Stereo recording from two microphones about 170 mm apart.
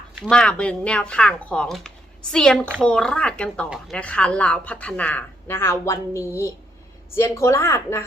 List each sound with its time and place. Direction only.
0.2 s speech: 5° left (ahead or behind)